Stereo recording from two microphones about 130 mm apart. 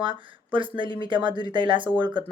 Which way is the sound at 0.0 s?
40° right (ahead or behind).